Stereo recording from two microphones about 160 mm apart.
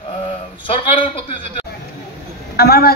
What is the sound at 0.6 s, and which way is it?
Speech, 30° left (ahead or behind).